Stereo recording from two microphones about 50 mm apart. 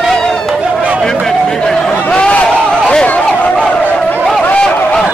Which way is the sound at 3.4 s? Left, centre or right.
Left.